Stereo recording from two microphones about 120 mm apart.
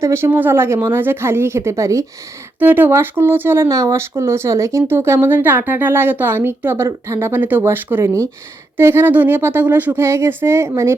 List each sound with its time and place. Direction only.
0.0 s speech: 20° right (ahead or behind)